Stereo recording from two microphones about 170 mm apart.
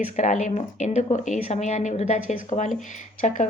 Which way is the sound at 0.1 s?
45° left (ahead or behind).